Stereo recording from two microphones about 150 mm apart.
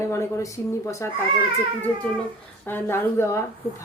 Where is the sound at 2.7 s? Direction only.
15° left (ahead or behind).